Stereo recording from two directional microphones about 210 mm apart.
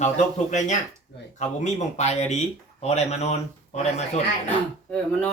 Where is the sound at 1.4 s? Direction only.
30° left (ahead or behind).